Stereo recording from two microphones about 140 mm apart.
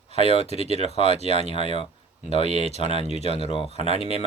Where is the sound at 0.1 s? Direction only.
45° left (ahead or behind).